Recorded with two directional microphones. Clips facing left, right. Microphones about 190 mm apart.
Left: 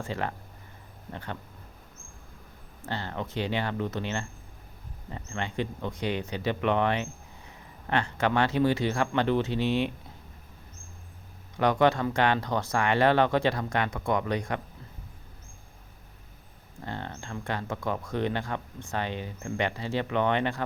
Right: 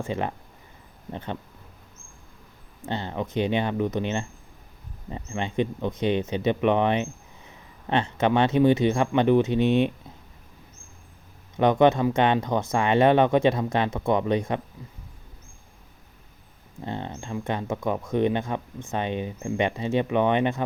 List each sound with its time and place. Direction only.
0.0 s speech: 20° right (ahead or behind)
2.8 s speech: 20° right (ahead or behind)
11.5 s speech: 20° right (ahead or behind)
16.8 s speech: 20° right (ahead or behind)